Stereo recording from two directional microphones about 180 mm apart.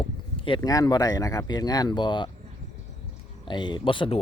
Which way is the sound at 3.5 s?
25° left (ahead or behind).